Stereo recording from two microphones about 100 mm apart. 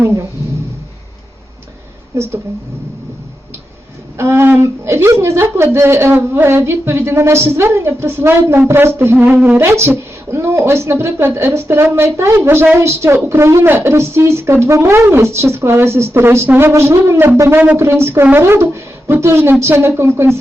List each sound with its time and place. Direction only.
0.0 s speech: 25° right (ahead or behind)
2.1 s a woman's voice: 30° right (ahead or behind)
4.2 s a woman's voice: 25° right (ahead or behind)